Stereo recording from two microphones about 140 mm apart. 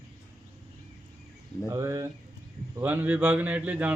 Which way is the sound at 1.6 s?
20° right (ahead or behind).